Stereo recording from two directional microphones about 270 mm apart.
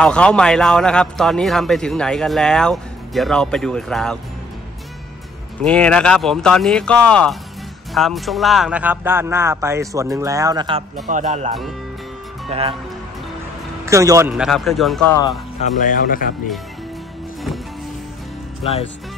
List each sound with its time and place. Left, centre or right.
0.0 s a man's voice: centre
5.6 s a man's voice: centre
11.1 s speech: right
13.8 s a man's voice: centre
15.6 s speech: left
18.6 s speech: left